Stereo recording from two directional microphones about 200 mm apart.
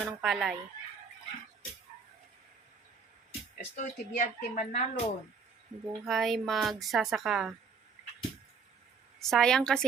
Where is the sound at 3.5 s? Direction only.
40° left (ahead or behind).